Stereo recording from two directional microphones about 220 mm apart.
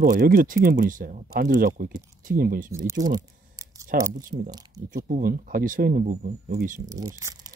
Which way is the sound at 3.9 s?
40° right (ahead or behind).